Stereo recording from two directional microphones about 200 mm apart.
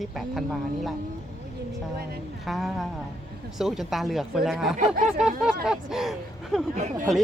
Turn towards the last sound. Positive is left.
turn(degrees=-35)  # may be behind; listen again after turning